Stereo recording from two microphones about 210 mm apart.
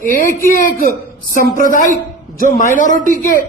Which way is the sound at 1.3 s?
40° left (ahead or behind).